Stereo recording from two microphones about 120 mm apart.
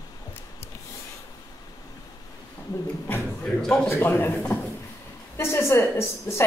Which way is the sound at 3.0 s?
10° left (ahead or behind).